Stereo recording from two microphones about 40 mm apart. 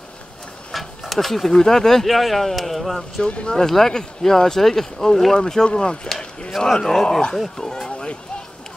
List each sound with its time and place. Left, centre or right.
0.7 s speech: centre
2.0 s a man's voice: centre
3.3 s speech: left
3.5 s speech: centre; by 5.9 s left
6.8 s speech: centre